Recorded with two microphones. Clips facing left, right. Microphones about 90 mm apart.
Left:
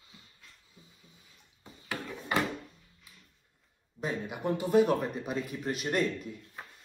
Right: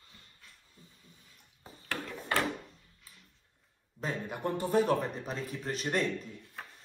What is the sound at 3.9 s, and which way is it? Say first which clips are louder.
A man's voice: left 1 dB; 5° left (ahead or behind).